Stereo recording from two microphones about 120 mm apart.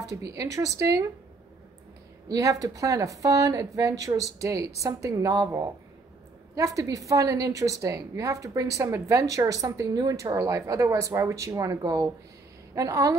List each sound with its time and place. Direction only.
0.0 s a woman's voice: 30° right (ahead or behind)
2.2 s a woman's voice: 30° right (ahead or behind)